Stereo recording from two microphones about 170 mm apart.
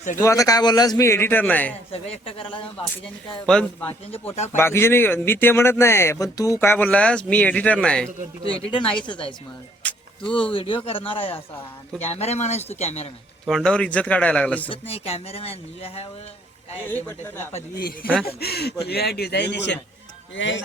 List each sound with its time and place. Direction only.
0.2 s speech: 20° left (ahead or behind)
1.9 s speech: 35° left (ahead or behind)
3.4 s speech: 5° left (ahead or behind)
4.3 s speech: 40° left (ahead or behind)
4.5 s speech: 15° left (ahead or behind)
8.7 s speech: 30° left (ahead or behind)
9.8 s a sound: 10° left (ahead or behind)
10.5 s speech: 30° left (ahead or behind)
13.4 s speech: centre (ahead or behind)
14.7 s speech: 35° left (ahead or behind)
16.9 s speech: 15° left (ahead or behind)
18.3 s speech: 70° left (ahead or behind); by 20.6 s 90° left